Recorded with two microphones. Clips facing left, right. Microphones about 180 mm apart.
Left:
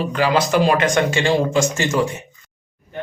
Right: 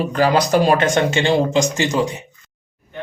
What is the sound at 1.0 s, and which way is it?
A man's voice, 20° right (ahead or behind).